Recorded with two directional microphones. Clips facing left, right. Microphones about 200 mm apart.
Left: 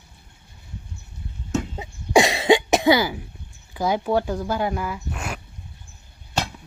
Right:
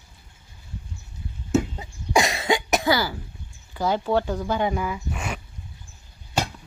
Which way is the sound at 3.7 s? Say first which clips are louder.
Left 1 dB; 10° left (ahead or behind).